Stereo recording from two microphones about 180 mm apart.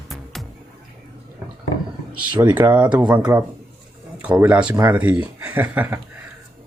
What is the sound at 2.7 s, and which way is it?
Speech, 5° right (ahead or behind).